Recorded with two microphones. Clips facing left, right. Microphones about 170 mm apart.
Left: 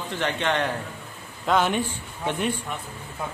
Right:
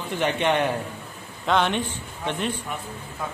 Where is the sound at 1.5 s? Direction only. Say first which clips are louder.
Even; 5° left (ahead or behind).